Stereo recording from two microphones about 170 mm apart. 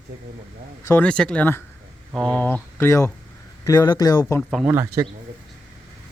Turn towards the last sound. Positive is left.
turn(degrees=-15)  # may be behind; listen again after turning